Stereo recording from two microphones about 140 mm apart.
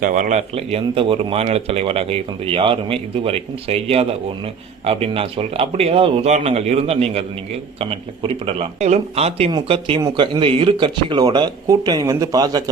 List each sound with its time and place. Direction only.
0.0 s speech: 65° right (ahead or behind); by 9.5 s 45° right (ahead or behind)
9.5 s speech: 35° right (ahead or behind)